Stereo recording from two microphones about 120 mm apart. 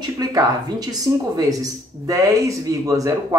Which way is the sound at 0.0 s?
30° right (ahead or behind).